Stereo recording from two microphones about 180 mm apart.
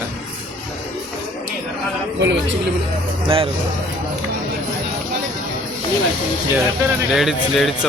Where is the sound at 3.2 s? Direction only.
30° right (ahead or behind).